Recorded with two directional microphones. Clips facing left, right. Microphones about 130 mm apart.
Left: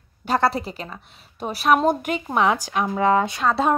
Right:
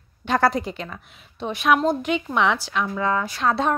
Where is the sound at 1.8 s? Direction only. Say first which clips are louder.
Left 2 dB; 15° left (ahead or behind).